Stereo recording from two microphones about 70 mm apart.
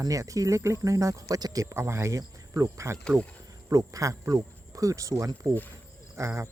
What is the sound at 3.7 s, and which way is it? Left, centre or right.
Speech, right.